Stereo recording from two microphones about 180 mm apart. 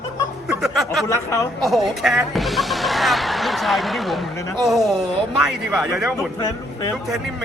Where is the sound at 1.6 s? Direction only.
Centre (ahead or behind).